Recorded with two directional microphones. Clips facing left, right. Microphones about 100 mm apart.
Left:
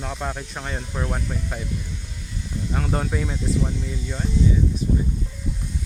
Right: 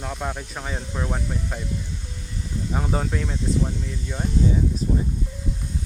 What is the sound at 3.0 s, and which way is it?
Speech, 5° left (ahead or behind).